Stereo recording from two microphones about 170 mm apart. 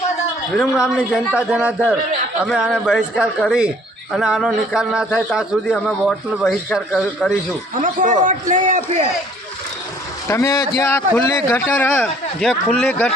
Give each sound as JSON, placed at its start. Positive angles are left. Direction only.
{"t": 0.5, "sound": "a man's voice", "side_deg": 0}
{"t": 7.8, "sound": "a man's voice", "side_deg": -50}
{"t": 10.2, "sound": "a man's voice", "side_deg": 15}